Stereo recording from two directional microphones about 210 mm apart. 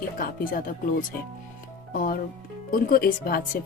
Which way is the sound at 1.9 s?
40° left (ahead or behind).